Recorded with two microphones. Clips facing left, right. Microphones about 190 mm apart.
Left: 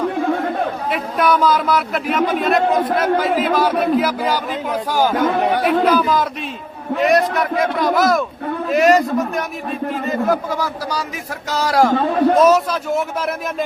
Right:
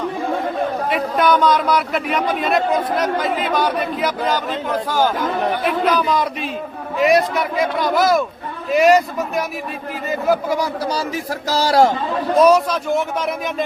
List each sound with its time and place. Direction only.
0.9 s a man's voice: centre (ahead or behind)
5.1 s speech: 85° left
5.8 s a man's voice: 5° left (ahead or behind)
11.4 s speech: 30° right (ahead or behind)
12.3 s speech: centre (ahead or behind)